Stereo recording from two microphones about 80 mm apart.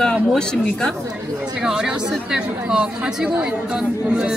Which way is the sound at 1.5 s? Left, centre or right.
Centre.